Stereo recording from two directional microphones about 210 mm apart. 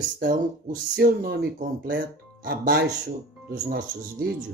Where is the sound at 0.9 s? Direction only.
45° right (ahead or behind).